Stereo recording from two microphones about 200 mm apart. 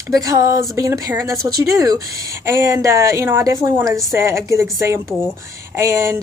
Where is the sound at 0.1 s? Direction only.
15° right (ahead or behind).